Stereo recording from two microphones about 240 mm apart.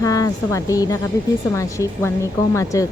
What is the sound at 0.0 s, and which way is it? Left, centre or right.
Speech, centre.